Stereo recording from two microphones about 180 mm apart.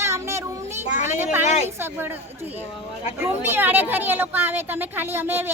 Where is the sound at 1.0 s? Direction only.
10° right (ahead or behind).